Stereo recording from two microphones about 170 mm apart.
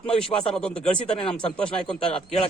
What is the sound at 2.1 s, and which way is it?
Speech, 35° left (ahead or behind).